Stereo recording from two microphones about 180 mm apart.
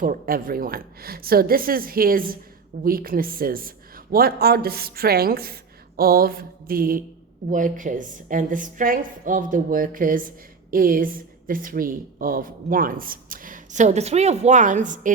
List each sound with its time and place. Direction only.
0.0 s a woman's voice: 50° right (ahead or behind)